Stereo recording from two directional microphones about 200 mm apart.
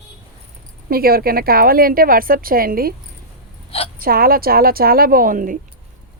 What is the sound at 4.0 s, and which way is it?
Speech, 50° right (ahead or behind).